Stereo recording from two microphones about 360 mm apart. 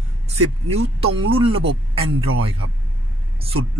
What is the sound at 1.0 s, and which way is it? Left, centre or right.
Speech, centre.